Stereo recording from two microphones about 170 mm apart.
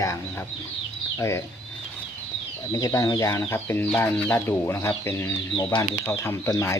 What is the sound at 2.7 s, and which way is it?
Speech, 20° left (ahead or behind).